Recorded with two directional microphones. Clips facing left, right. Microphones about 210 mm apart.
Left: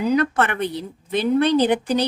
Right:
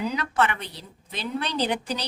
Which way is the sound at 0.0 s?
50° left (ahead or behind).